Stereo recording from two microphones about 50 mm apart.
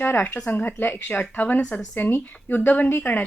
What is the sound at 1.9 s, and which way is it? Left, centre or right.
A woman's voice, left.